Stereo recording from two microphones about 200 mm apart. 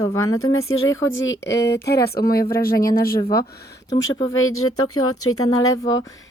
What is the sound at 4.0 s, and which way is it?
Speech, 80° left.